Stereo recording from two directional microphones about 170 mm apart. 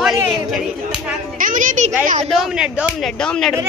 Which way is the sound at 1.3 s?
50° right (ahead or behind).